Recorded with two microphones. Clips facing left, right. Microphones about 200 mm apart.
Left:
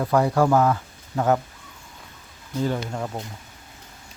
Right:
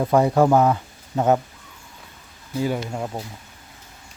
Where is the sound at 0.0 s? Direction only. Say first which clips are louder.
Right 3 dB; 20° right (ahead or behind).